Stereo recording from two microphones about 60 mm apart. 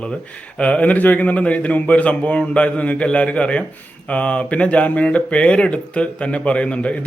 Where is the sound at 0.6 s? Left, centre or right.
Left.